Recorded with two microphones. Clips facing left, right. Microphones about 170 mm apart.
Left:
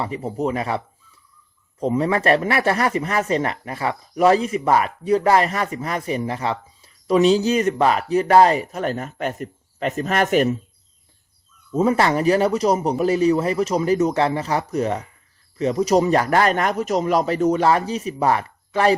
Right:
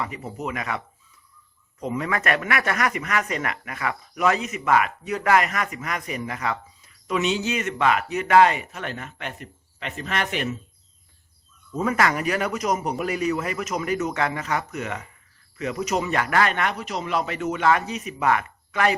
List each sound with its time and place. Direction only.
0.0 s speech: 30° left (ahead or behind)
1.8 s speech: 30° left (ahead or behind)
11.7 s speech: 30° left (ahead or behind)